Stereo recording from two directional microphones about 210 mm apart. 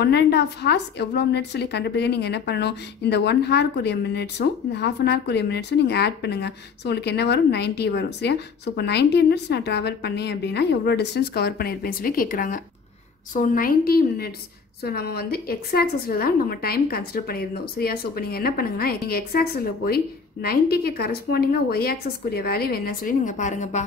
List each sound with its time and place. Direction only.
0.0 s a woman's voice: 50° left (ahead or behind); by 23.8 s 35° left (ahead or behind)